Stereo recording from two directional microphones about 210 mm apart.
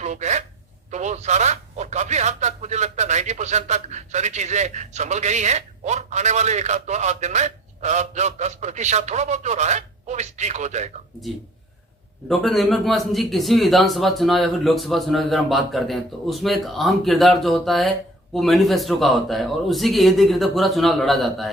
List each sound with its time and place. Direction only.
0.0 s a sound: 35° right (ahead or behind)
0.9 s speech: 35° right (ahead or behind)
12.3 s a man's voice: centre (ahead or behind)